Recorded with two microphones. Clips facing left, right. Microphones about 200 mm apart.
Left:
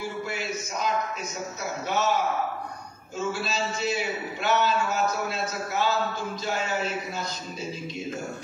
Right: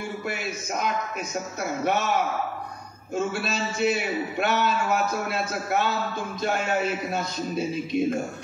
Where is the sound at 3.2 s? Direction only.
60° right (ahead or behind).